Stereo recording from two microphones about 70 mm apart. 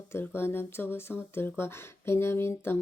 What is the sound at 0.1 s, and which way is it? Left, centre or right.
Speech, left.